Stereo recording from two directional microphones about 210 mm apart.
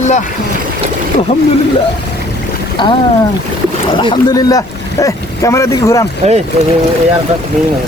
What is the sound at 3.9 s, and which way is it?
Speech, 20° left (ahead or behind).